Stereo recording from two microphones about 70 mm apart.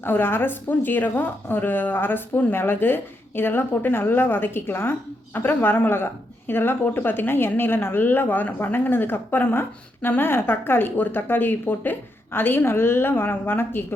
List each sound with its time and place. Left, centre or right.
0.0 s a woman's voice: left